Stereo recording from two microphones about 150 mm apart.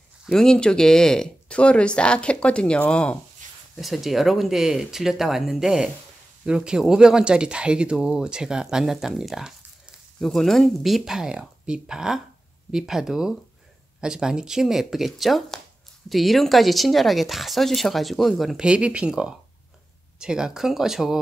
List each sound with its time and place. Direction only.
0.3 s speech: 5° left (ahead or behind)